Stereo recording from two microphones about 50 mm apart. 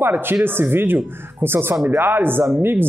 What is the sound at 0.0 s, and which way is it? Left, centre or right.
Speech, right.